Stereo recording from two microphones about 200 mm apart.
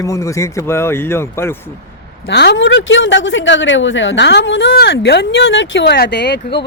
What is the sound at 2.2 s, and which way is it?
Speech, 60° left (ahead or behind).